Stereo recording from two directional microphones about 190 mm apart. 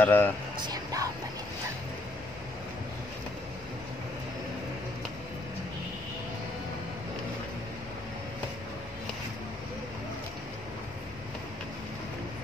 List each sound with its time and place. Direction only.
0.0 s speech: 10° left (ahead or behind)
0.6 s speech: 20° right (ahead or behind)